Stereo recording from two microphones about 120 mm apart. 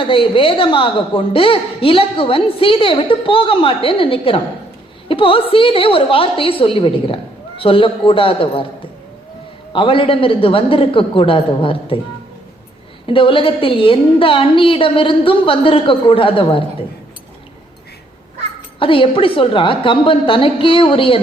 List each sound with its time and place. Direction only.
0.0 s a woman's voice: 45° left (ahead or behind)
13.1 s a woman's voice: 45° left (ahead or behind)
18.8 s a woman's voice: 45° left (ahead or behind)